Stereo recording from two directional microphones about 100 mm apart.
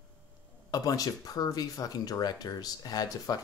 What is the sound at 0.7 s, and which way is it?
Speech, 40° left (ahead or behind).